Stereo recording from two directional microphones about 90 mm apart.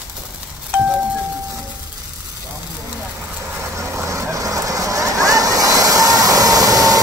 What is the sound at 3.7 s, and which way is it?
Vehicle, 35° right (ahead or behind).